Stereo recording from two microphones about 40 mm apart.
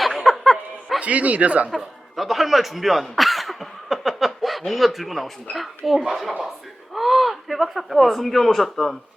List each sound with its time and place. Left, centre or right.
0.0 s music: centre
0.9 s speech: right
2.1 s a sound: centre
4.7 s speech: centre